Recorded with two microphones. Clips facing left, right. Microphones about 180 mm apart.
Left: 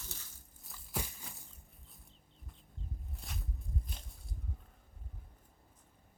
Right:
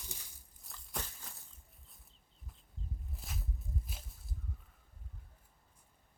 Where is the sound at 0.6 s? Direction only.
5° left (ahead or behind).